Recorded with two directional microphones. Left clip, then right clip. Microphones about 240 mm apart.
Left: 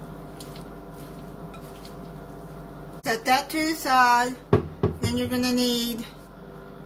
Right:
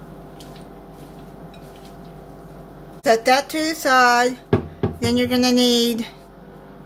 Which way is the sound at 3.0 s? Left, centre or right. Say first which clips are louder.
Right 7 dB; right.